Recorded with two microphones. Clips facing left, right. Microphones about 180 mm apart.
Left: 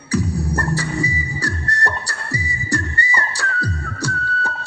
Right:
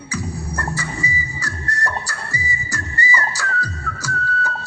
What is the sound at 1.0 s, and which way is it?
Music, 65° left (ahead or behind).